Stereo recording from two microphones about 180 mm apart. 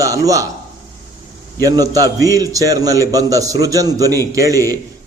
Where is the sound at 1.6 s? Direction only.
20° right (ahead or behind).